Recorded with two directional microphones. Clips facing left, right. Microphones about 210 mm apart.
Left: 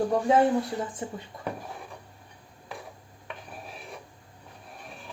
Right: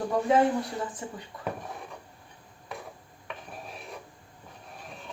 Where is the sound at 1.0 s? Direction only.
30° left (ahead or behind).